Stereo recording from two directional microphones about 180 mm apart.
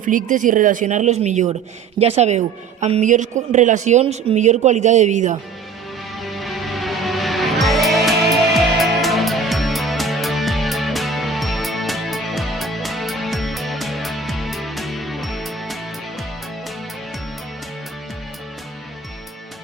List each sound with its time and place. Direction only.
0.0 s speech: 45° right (ahead or behind)
6.1 s music: centre (ahead or behind)